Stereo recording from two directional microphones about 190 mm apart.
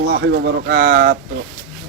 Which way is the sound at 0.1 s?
70° right (ahead or behind).